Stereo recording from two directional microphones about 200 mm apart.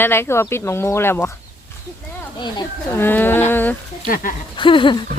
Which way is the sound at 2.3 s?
20° left (ahead or behind).